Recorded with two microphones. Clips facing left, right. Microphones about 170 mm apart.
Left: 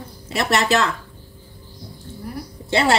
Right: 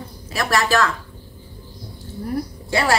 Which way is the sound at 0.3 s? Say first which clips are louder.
Left 1 dB; 25° left (ahead or behind).